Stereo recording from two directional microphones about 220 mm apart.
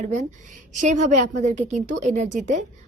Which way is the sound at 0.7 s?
30° right (ahead or behind).